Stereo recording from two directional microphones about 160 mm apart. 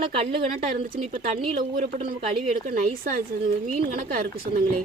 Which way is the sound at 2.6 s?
55° right (ahead or behind).